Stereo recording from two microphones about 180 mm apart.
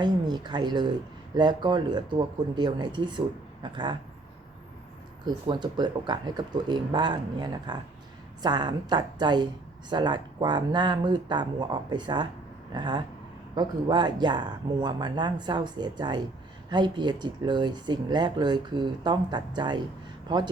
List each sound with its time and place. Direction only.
0.0 s speech: 25° right (ahead or behind)
5.2 s speech: 25° right (ahead or behind)